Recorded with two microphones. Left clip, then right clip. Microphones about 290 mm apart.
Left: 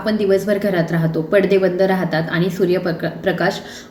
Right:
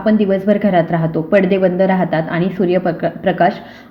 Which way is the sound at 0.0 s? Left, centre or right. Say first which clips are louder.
Right 2 dB; centre.